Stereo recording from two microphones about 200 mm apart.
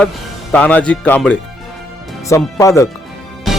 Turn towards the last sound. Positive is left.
turn(degrees=0)  # may be behind; listen again after turning